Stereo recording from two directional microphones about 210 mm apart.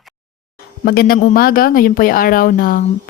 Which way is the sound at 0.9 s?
45° left (ahead or behind).